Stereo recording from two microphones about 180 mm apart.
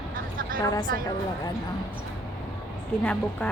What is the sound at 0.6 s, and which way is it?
Speech, 20° left (ahead or behind).